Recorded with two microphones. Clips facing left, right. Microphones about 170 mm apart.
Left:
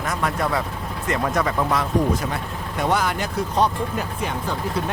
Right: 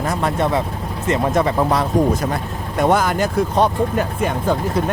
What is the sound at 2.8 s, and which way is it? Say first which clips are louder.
Speech: right 6 dB; 45° right (ahead or behind).